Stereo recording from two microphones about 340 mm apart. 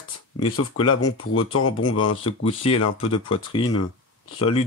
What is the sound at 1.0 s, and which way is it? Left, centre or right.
Speech, left.